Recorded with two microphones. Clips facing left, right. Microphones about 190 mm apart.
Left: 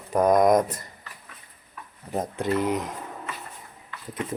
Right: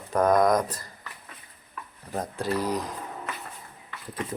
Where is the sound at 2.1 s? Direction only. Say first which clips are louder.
Left 3 dB; 20° left (ahead or behind).